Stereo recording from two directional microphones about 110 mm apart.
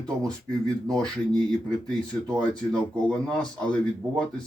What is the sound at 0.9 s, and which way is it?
Speech, 5° left (ahead or behind).